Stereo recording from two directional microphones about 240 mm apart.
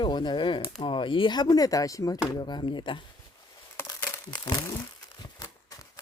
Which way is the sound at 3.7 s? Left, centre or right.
Centre.